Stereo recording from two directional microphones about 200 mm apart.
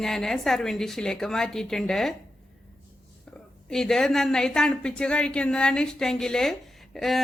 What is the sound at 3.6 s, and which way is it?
A woman's voice, centre (ahead or behind).